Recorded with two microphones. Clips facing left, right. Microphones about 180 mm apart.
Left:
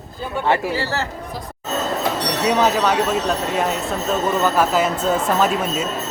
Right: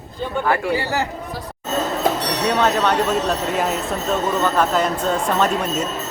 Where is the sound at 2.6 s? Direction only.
5° left (ahead or behind).